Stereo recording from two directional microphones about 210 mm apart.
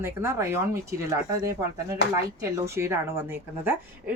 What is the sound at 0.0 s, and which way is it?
Speech, 10° right (ahead or behind).